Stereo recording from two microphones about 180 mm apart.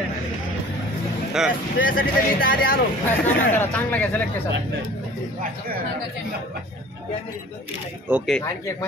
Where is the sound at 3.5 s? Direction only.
10° left (ahead or behind).